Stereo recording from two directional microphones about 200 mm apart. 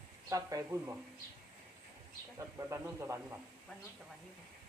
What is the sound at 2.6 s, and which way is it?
Speech, 10° right (ahead or behind).